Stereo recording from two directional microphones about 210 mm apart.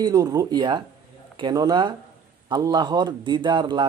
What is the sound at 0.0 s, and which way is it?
Speech, 15° right (ahead or behind).